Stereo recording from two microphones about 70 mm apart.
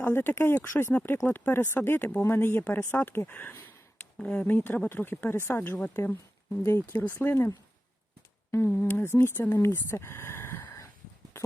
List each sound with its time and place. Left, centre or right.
0.0 s speech: left
2.0 s speech: left
4.2 s speech: centre; by 6.9 s left
6.9 s speech: left
8.5 s speech: left